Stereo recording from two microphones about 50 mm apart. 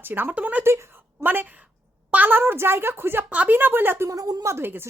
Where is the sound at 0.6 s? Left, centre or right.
Right.